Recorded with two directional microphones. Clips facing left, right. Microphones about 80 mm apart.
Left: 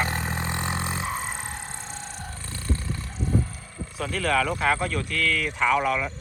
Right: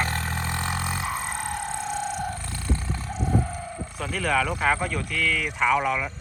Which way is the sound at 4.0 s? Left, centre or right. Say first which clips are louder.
Left 1 dB; centre.